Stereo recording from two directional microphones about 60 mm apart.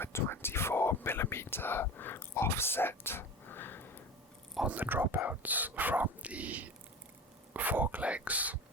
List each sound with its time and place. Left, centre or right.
0.0 s speech: left
4.6 s speech: right